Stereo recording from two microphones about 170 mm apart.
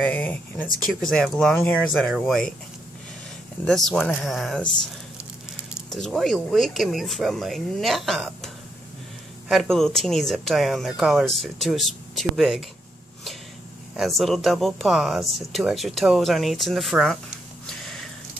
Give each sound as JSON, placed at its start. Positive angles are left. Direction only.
{"t": 0.0, "sound": "speech", "side_deg": 10}
{"t": 3.6, "sound": "speech", "side_deg": 5}
{"t": 5.9, "sound": "speech", "side_deg": 0}
{"t": 9.5, "sound": "speech", "side_deg": 5}
{"t": 13.9, "sound": "speech", "side_deg": 0}
{"t": 17.6, "sound": "a sound", "side_deg": 5}